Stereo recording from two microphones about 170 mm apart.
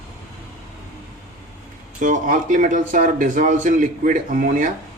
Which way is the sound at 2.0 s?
50° right (ahead or behind).